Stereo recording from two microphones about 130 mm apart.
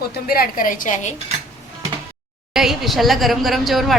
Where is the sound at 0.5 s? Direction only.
90° left; by 1.1 s 70° left (ahead or behind).